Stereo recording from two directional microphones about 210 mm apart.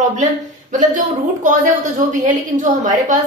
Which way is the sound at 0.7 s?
35° right (ahead or behind).